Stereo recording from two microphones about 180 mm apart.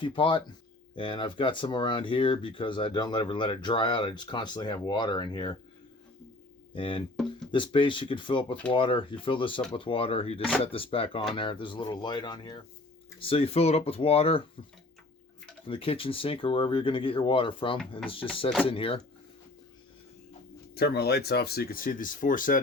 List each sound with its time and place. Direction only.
0.0 s speech: 30° left (ahead or behind)
6.7 s speech: 30° left (ahead or behind)
15.6 s speech: 30° left (ahead or behind)
20.7 s speech: 60° left (ahead or behind)